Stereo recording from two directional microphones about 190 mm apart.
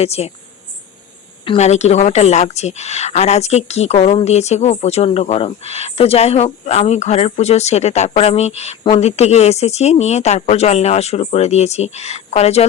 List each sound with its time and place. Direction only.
0.0 s a woman's voice: 35° left (ahead or behind)
1.5 s a woman's voice: 35° left (ahead or behind)